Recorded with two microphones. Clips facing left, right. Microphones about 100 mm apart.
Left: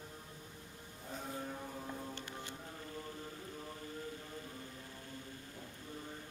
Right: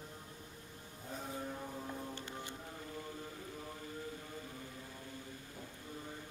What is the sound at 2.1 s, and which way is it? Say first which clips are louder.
Music: right 1 dB; 15° right (ahead or behind).